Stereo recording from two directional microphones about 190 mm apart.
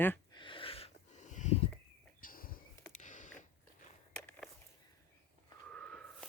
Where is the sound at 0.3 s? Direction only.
25° left (ahead or behind).